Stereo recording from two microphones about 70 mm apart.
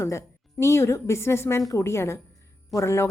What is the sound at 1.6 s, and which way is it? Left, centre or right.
Speech, left.